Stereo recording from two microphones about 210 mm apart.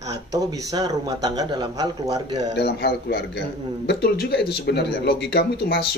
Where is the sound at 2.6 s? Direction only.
50° left (ahead or behind).